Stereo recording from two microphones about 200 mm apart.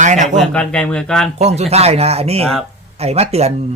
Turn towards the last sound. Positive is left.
turn(degrees=-30)  # may be behind; listen again after turning